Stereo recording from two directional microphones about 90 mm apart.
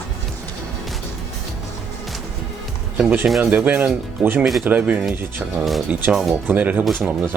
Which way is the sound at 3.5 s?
20° right (ahead or behind).